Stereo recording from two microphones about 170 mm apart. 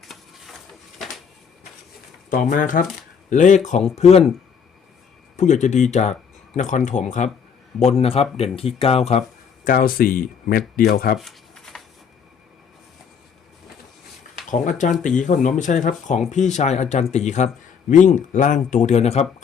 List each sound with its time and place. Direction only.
0.0 s a sound: centre (ahead or behind)
2.3 s speech: 55° left (ahead or behind)
5.4 s speech: 45° left (ahead or behind)
9.6 s speech: 55° left (ahead or behind)
11.2 s shuffling cards: centre (ahead or behind)
14.5 s speech: 45° left (ahead or behind)